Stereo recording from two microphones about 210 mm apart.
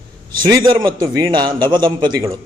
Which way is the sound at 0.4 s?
20° right (ahead or behind).